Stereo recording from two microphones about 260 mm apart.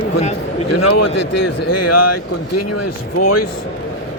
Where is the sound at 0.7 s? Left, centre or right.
Left.